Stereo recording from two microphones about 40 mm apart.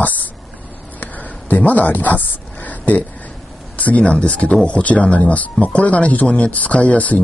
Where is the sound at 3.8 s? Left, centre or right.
Left.